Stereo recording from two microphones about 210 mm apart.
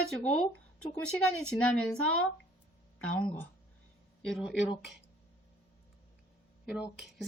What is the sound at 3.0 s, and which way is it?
Speech, 5° left (ahead or behind).